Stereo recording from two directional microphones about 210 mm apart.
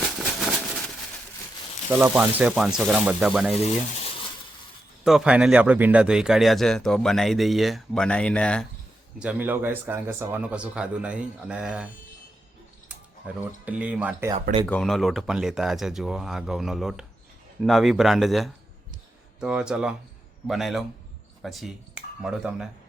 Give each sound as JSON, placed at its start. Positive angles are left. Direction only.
{"t": 1.9, "sound": "speech", "side_deg": -5}
{"t": 3.6, "sound": "speech", "side_deg": 30}
{"t": 5.0, "sound": "speech", "side_deg": -5}
{"t": 9.1, "sound": "speech", "side_deg": -5}
{"t": 12.9, "sound": "speech", "side_deg": -5}
{"t": 14.7, "sound": "speech", "side_deg": 0}